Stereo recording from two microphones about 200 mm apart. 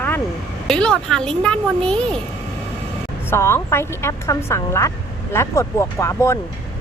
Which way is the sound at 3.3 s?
10° left (ahead or behind).